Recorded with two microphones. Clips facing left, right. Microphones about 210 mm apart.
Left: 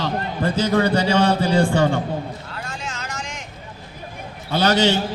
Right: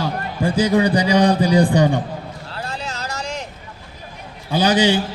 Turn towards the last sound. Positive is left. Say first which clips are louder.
# right 2 dB
turn(degrees=-15)  # may be behind; listen again after turning